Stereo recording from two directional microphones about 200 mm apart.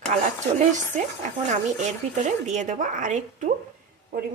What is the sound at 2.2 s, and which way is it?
A woman's voice, 35° right (ahead or behind).